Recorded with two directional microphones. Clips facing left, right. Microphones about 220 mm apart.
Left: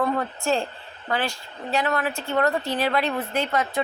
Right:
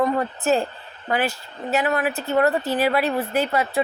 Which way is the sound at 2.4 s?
35° right (ahead or behind).